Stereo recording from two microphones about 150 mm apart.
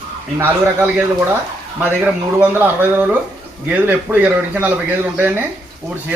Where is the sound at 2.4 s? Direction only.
10° right (ahead or behind).